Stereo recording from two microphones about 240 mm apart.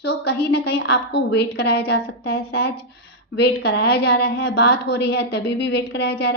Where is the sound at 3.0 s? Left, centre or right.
Left.